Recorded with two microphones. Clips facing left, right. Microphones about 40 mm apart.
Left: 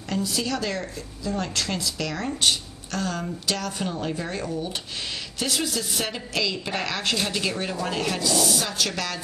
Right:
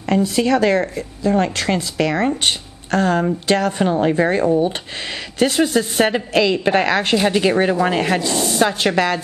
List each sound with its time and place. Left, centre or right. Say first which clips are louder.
0.1 s speech: right 11 dB; right